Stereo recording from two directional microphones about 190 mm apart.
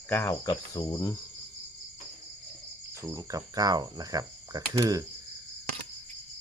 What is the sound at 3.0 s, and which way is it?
Speech, 15° right (ahead or behind).